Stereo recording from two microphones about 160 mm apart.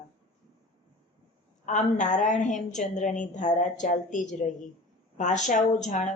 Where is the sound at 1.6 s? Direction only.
50° left (ahead or behind).